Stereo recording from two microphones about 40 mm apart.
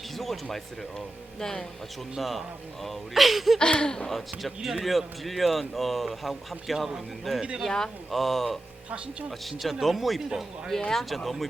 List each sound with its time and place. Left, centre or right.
0.5 s speech: centre
2.1 s speech: centre
3.6 s speech: left
4.1 s a man's voice: centre
7.3 s a man's voice: centre
10.7 s speech: centre
10.9 s speech: centre